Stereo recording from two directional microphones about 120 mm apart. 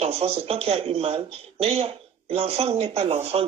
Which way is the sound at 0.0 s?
55° right (ahead or behind).